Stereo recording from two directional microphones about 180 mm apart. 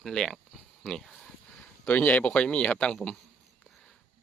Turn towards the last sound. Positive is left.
turn(degrees=5)  # may be behind; listen again after turning